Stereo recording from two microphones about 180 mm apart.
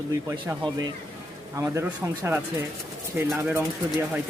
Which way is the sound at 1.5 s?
15° right (ahead or behind).